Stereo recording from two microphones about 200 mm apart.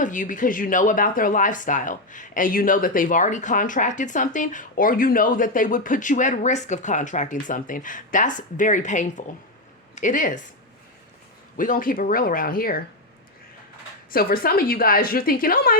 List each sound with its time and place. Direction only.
0.0 s speech: 40° left (ahead or behind)
11.5 s a woman's voice: 45° left (ahead or behind)
14.1 s a woman's voice: 45° left (ahead or behind)